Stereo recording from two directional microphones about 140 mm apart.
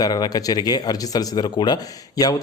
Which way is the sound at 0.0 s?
25° left (ahead or behind).